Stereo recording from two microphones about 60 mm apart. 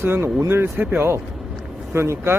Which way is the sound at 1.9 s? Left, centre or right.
Right.